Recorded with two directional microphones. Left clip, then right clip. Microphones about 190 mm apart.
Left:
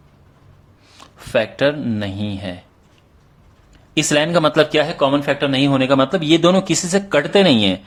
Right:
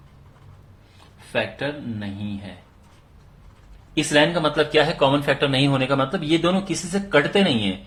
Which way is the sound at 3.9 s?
55° left (ahead or behind).